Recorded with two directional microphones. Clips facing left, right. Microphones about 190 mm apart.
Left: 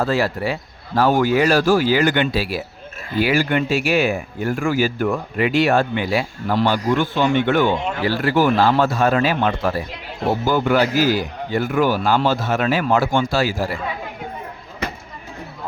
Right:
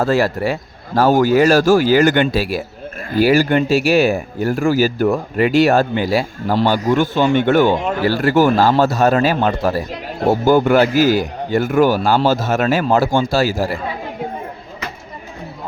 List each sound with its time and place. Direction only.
0.0 s speech: 45° right (ahead or behind)